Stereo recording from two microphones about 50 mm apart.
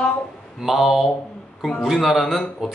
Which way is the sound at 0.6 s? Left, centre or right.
Centre.